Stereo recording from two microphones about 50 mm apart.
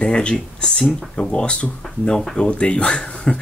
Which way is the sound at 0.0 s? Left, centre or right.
Centre.